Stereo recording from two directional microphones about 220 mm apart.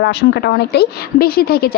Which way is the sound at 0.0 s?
50° left (ahead or behind).